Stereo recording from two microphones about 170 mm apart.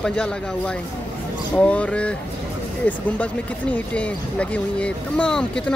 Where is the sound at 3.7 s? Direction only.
5° left (ahead or behind).